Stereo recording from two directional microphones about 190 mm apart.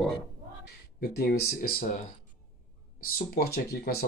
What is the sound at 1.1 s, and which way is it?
Speech, 55° left (ahead or behind).